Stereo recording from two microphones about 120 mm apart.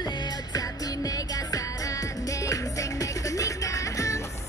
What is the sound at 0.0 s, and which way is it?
Music, 35° left (ahead or behind).